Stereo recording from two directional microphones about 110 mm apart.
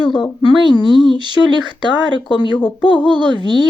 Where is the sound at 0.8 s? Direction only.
45° right (ahead or behind).